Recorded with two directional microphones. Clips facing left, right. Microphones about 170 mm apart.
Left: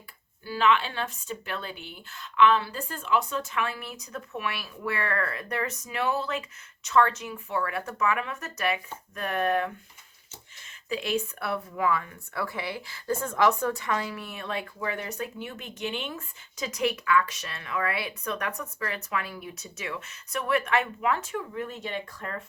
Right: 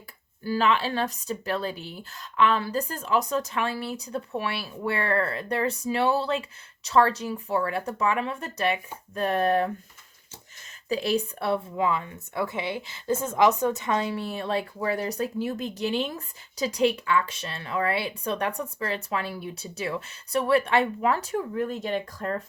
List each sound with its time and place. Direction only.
0.4 s a woman's voice: 40° right (ahead or behind)
10.8 s a woman's voice: 35° right (ahead or behind)